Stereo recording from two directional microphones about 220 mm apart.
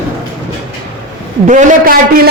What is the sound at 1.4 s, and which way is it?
Speech, 40° right (ahead or behind).